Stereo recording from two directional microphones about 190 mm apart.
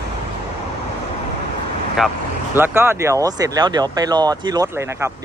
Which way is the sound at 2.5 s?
10° right (ahead or behind).